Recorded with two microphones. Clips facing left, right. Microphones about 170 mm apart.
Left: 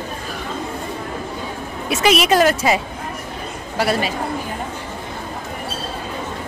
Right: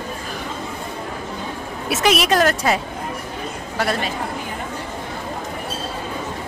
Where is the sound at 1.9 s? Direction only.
Centre (ahead or behind).